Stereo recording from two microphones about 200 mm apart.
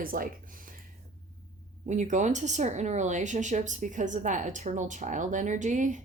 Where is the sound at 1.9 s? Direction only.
40° right (ahead or behind).